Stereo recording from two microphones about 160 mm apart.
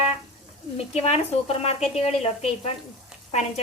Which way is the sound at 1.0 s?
40° left (ahead or behind).